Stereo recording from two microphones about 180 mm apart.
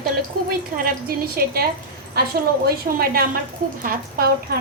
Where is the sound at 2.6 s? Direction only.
55° right (ahead or behind).